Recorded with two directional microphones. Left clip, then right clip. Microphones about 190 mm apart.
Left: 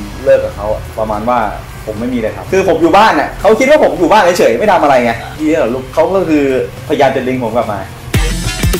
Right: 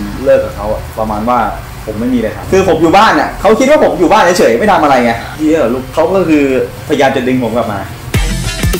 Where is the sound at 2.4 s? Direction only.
5° left (ahead or behind).